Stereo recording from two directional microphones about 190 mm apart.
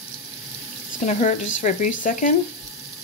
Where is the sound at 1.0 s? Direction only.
40° left (ahead or behind).